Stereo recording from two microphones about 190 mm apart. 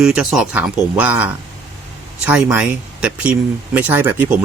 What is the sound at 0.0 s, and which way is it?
Speech, 5° right (ahead or behind).